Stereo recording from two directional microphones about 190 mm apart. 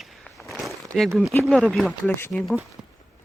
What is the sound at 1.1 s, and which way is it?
Speech, 5° right (ahead or behind).